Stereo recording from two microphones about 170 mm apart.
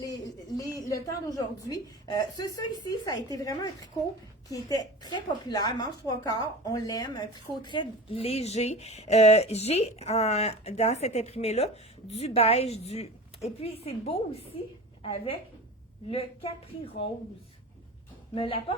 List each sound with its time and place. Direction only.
0.0 s a sound: 20° left (ahead or behind)
0.8 s a woman's voice: 20° left (ahead or behind)
18.3 s a woman's voice: 30° left (ahead or behind)